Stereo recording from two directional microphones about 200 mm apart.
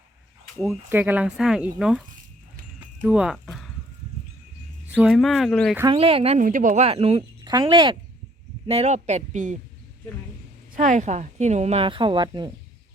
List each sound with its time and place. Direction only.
0.7 s speech: 10° right (ahead or behind)
4.9 s speech: 5° right (ahead or behind)
5.9 s speech: 30° right (ahead or behind)
10.8 s speech: 40° right (ahead or behind); by 12.5 s 25° right (ahead or behind)